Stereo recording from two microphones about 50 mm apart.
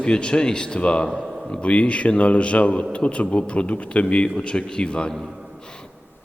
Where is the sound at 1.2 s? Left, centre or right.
Centre.